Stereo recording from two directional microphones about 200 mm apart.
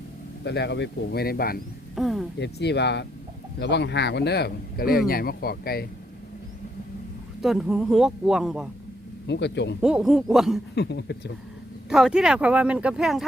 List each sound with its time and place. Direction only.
0.4 s speech: 55° left (ahead or behind)
2.0 s speech: centre (ahead or behind)
2.4 s speech: 60° left (ahead or behind)
7.4 s speech: centre (ahead or behind)
9.2 s speech: 60° left (ahead or behind)
9.8 s speech: 5° right (ahead or behind)
10.8 s speech: 55° left (ahead or behind)
11.9 s speech: 5° right (ahead or behind)